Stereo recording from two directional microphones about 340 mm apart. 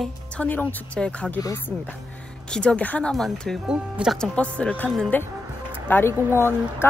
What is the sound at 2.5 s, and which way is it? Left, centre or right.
Speech, centre.